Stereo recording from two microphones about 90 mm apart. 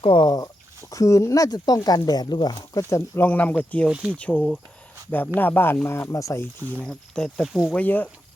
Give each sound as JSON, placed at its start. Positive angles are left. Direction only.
{"t": 0.0, "sound": "speech", "side_deg": 60}
{"t": 2.9, "sound": "speech", "side_deg": 20}
{"t": 3.8, "sound": "speech", "side_deg": -10}
{"t": 4.1, "sound": "speech", "side_deg": 15}
{"t": 6.8, "sound": "speech", "side_deg": 5}
{"t": 7.4, "sound": "speech", "side_deg": -5}
{"t": 7.8, "sound": "speech", "side_deg": 15}